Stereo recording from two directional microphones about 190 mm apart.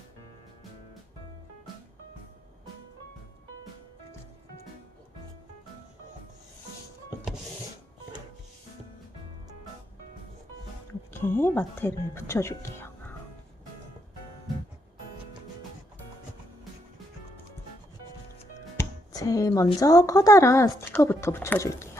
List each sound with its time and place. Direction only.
11.1 s speech: 10° left (ahead or behind)
18.8 s a sound: 20° left (ahead or behind)
19.8 s speech: 15° left (ahead or behind)